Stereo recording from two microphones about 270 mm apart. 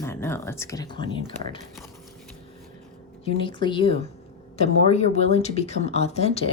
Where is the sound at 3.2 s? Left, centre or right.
Centre.